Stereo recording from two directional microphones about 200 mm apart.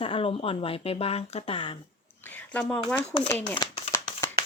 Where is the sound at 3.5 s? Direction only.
25° left (ahead or behind).